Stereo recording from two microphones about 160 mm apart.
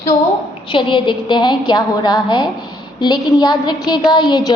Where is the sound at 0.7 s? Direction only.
30° left (ahead or behind).